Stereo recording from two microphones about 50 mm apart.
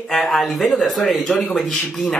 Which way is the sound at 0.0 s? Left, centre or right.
Centre.